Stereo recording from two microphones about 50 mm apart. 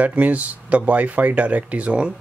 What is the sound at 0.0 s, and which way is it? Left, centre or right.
Speech, right.